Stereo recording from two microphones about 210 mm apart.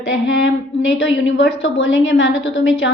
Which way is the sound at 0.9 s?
60° left (ahead or behind).